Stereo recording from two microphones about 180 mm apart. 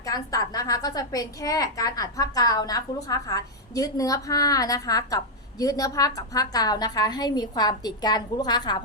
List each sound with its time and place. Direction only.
0.0 s a woman's voice: 20° left (ahead or behind)